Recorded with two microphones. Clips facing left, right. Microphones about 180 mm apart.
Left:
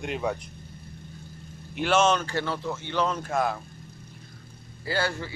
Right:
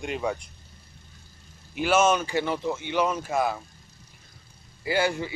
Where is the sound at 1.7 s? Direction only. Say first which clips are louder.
Right 1 dB; 5° right (ahead or behind).